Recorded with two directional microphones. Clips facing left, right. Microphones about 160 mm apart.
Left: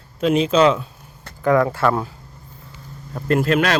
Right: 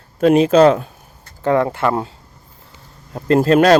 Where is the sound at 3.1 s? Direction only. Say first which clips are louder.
Right 5 dB; 30° right (ahead or behind).